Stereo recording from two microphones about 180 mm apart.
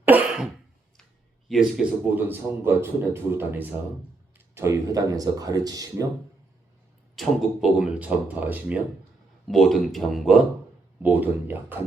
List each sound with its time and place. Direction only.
0.0 s cough: 10° right (ahead or behind)
1.5 s a man's voice: 5° right (ahead or behind); by 6.1 s 20° right (ahead or behind)
7.2 s a man's voice: 5° right (ahead or behind)
9.5 s a man's voice: centre (ahead or behind)